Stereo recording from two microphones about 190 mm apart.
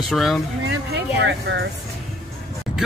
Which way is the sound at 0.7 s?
60° right (ahead or behind).